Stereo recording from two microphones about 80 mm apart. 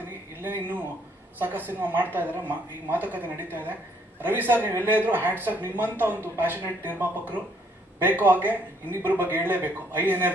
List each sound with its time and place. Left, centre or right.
0.4 s speech: right